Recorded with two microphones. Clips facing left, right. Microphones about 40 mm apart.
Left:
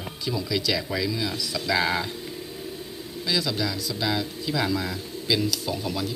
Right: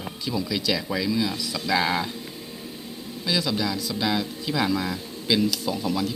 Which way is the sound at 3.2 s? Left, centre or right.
Right.